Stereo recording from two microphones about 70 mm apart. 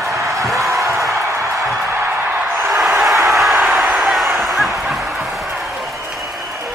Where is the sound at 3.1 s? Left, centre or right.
Right.